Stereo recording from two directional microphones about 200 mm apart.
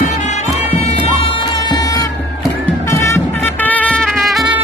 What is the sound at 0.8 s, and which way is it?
Bagpipes, 30° left (ahead or behind).